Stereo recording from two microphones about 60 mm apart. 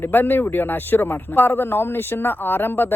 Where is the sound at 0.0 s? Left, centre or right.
Left.